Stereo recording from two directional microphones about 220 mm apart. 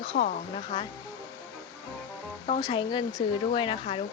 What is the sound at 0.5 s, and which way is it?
Speech, 25° left (ahead or behind).